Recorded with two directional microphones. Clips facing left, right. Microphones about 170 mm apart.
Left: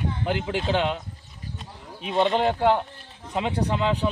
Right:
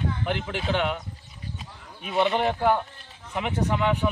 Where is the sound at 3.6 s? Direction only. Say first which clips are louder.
Right 2 dB; 30° left (ahead or behind).